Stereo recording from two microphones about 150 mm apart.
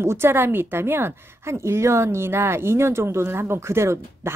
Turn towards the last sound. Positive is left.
turn(degrees=-15)  # may be behind; listen again after turning